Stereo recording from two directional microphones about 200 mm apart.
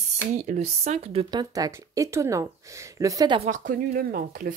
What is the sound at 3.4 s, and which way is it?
Speech, 40° right (ahead or behind).